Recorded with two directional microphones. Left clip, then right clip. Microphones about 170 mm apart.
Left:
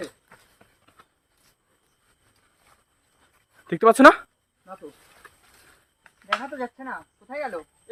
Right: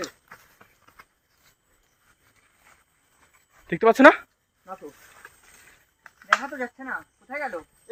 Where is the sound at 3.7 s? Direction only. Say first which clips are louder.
Left 1 dB; 20° left (ahead or behind).